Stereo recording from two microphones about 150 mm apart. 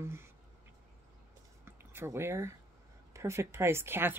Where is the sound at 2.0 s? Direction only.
15° right (ahead or behind).